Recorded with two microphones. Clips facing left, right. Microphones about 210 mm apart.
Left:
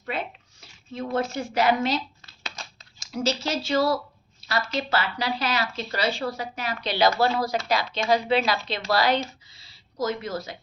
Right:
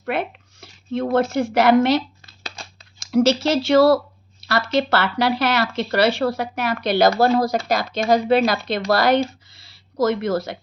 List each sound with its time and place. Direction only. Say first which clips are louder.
0.0 s a sound: right 7 dB; 65° right (ahead or behind)
1.5 s speech: right 7 dB; 70° right (ahead or behind)
3.1 s speech: right 10 dB; 75° right (ahead or behind); by 9.2 s 50° right (ahead or behind)
10.0 s speech: right 8 dB; 70° right (ahead or behind)